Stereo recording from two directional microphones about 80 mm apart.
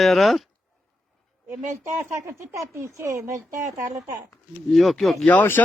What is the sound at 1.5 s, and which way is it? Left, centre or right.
Speech, right.